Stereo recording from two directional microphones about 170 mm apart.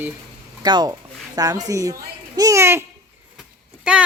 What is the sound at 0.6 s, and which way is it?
A child's voice, 25° right (ahead or behind).